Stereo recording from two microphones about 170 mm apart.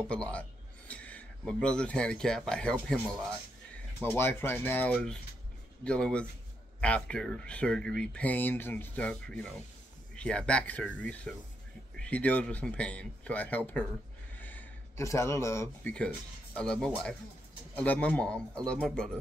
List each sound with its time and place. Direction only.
0.1 s a man's voice: 5° left (ahead or behind)
4.0 s speech: 10° left (ahead or behind)